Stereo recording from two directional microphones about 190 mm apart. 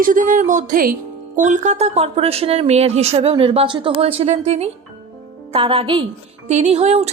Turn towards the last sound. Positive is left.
turn(degrees=-35)  # may be behind; listen again after turning